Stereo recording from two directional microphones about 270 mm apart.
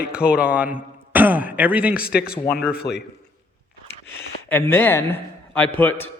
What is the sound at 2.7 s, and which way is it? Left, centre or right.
Speech, left.